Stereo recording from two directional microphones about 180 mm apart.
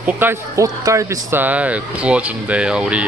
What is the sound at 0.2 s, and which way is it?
Speech, 15° right (ahead or behind).